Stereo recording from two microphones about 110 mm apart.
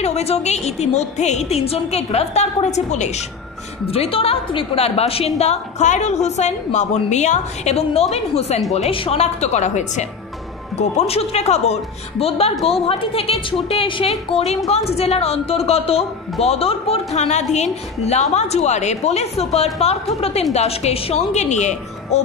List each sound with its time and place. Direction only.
0.0 s a woman's voice: 70° left (ahead or behind); by 3.3 s 90° left
3.8 s a woman's voice: 60° left (ahead or behind); by 8.6 s 75° left (ahead or behind)
8.9 s a woman's voice: 60° left (ahead or behind); by 10.0 s 90° left
10.8 s a woman's voice: 80° left
21.3 s speech: 90° left